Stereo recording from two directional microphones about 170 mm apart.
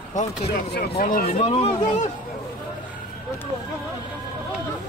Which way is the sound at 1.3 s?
35° left (ahead or behind).